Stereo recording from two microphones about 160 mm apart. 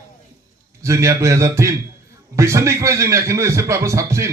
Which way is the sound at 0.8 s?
20° right (ahead or behind).